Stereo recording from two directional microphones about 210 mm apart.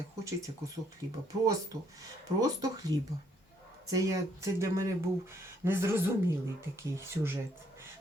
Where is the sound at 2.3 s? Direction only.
15° right (ahead or behind).